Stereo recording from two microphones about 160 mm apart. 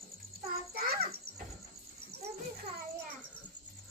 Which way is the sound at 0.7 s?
70° right (ahead or behind).